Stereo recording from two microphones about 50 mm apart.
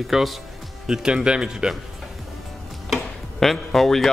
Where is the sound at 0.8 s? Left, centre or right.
Centre.